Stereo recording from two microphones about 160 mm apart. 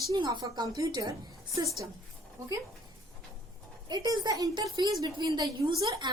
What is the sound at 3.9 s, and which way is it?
A woman's voice, 25° right (ahead or behind).